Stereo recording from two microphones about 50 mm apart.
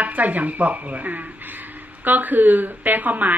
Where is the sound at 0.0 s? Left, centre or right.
Right.